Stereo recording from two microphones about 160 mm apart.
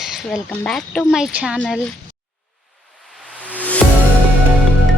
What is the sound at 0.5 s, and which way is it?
Speech, 5° left (ahead or behind).